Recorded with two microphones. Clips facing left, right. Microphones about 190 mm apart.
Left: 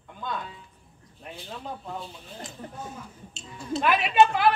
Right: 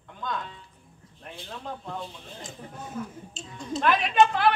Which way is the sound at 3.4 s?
65° left (ahead or behind).